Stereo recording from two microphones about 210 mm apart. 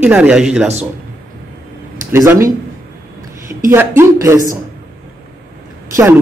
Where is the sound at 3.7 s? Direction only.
10° right (ahead or behind).